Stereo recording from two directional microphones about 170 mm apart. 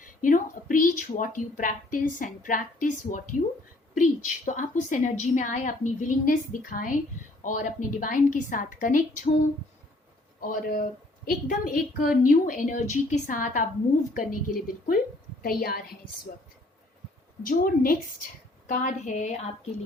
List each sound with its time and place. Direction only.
0.0 s a woman's voice: 50° left (ahead or behind)
10.4 s a woman's voice: 55° left (ahead or behind)
17.4 s a woman's voice: 55° left (ahead or behind)